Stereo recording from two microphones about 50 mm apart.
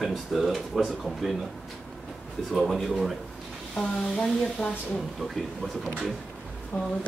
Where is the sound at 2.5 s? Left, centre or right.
Centre.